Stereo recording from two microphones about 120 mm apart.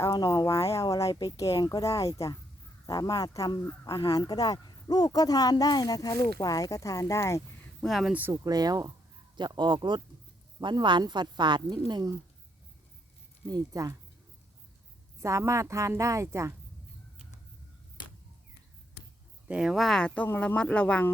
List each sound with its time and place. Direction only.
0.0 s speech: 30° left (ahead or behind)
7.8 s speech: centre (ahead or behind)
8.1 s speech: 15° right (ahead or behind)
8.4 s speech: 30° right (ahead or behind)
13.5 s a woman's voice: 30° right (ahead or behind)
15.2 s a woman's voice: 25° right (ahead or behind)
19.5 s speech: 5° right (ahead or behind)
20.2 s speech: 15° left (ahead or behind)